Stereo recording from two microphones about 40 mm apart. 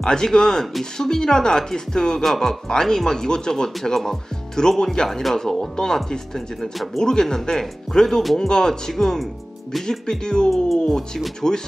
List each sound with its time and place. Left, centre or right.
0.0 s speech: centre
9.8 s speech: centre
10.5 s speech: centre
11.4 s speech: centre